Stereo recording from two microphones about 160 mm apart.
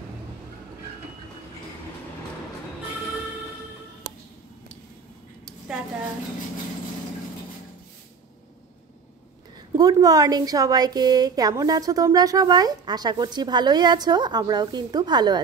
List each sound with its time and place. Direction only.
9.8 s a woman's voice: 25° right (ahead or behind)